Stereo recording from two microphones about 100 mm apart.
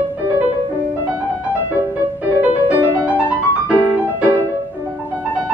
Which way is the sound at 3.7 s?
15° right (ahead or behind).